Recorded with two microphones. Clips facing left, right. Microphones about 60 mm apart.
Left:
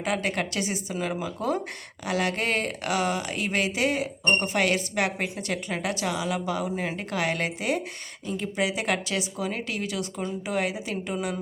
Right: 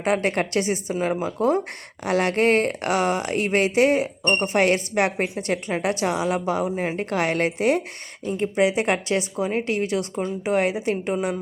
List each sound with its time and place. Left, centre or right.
0.0 s speech: right
8.3 s speech: right